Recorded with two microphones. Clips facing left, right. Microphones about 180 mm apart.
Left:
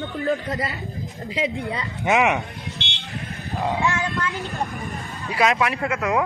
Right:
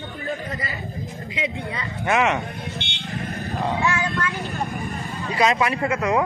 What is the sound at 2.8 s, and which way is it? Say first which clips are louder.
Vehicle: even; 55° right (ahead or behind).